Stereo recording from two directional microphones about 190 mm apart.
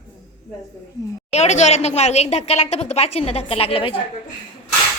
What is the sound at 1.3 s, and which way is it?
A woman's voice, 35° left (ahead or behind).